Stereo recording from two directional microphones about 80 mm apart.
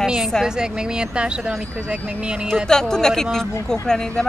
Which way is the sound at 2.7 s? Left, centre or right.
Centre.